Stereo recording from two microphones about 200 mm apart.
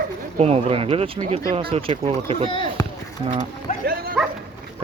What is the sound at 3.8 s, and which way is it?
Dog, 45° right (ahead or behind).